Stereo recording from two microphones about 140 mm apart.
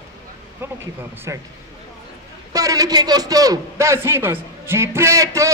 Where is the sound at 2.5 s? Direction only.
25° right (ahead or behind).